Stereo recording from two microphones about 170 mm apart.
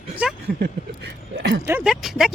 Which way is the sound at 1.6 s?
5° right (ahead or behind).